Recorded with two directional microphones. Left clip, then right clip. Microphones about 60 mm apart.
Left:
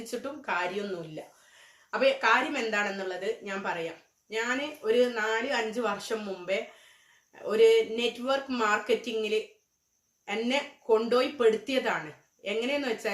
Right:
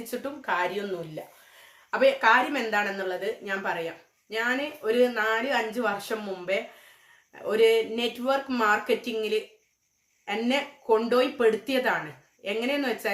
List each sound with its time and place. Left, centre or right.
0.0 s speech: right
1.9 s speech: right